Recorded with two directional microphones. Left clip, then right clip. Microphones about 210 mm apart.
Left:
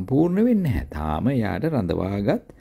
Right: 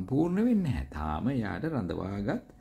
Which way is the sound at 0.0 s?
30° left (ahead or behind).